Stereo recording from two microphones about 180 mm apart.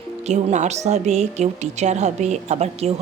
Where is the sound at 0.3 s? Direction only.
40° right (ahead or behind).